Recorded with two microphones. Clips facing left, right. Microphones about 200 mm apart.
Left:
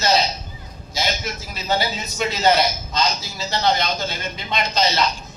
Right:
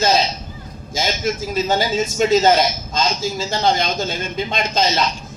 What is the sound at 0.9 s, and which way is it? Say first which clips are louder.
A man's voice: right 5 dB; 50° right (ahead or behind).